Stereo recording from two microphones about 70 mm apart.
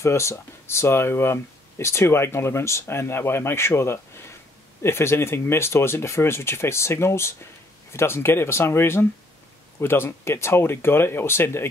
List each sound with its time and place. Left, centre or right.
0.0 s speech: left